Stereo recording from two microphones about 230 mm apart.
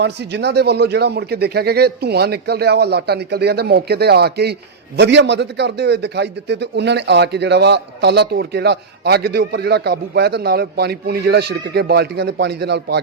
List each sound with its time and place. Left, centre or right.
0.0 s a man's voice: right